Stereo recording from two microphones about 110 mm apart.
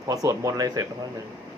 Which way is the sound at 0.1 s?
30° right (ahead or behind).